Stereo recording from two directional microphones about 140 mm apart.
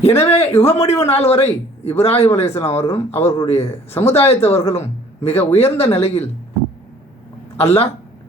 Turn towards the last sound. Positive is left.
turn(degrees=45)  # may be behind; listen again after turning